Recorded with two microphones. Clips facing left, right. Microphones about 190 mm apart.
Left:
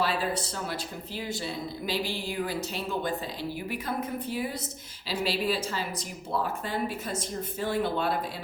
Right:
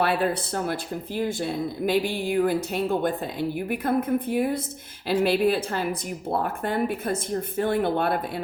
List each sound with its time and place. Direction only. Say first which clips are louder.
0.0 s speech: right 5 dB; 60° right (ahead or behind)